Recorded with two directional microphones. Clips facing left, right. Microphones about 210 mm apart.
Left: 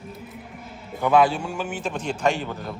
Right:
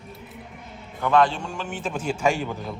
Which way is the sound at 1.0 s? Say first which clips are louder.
Left 2 dB; 10° left (ahead or behind).